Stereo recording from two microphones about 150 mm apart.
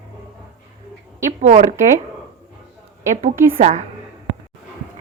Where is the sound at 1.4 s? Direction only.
55° right (ahead or behind).